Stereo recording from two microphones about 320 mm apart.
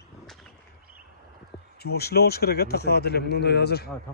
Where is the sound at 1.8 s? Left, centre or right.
Left.